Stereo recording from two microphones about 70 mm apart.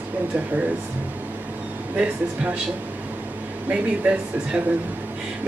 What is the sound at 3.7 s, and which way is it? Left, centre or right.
Speech, centre.